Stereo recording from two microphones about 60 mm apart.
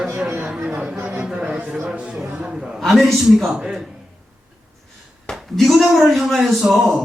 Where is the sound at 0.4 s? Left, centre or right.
Centre.